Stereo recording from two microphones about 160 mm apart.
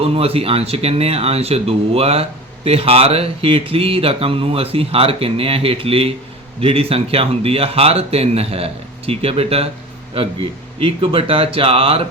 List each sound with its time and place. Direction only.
0.0 s speech: 35° right (ahead or behind)